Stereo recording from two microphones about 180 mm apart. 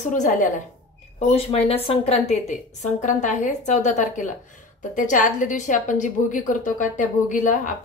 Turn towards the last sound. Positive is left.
turn(degrees=45)  # may be behind; listen again after turning